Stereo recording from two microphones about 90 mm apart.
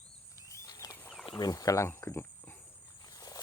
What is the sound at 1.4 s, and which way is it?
Speech, 40° left (ahead or behind).